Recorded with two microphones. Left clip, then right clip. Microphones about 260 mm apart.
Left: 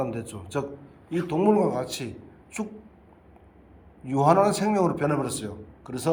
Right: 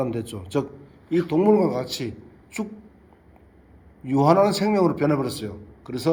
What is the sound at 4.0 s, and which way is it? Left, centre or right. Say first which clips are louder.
A man's voice: right 2 dB; right.